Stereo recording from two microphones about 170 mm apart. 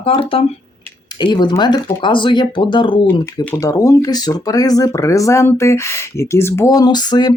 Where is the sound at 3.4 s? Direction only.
15° left (ahead or behind).